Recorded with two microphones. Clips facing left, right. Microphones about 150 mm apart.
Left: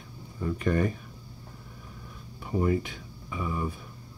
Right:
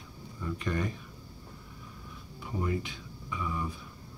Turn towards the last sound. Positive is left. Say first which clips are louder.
# left 3 dB
turn(degrees=50)  # may be behind; listen again after turning